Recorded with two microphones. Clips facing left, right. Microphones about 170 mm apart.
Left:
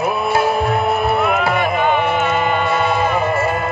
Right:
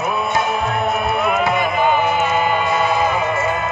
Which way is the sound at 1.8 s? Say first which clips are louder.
Even; 5° right (ahead or behind).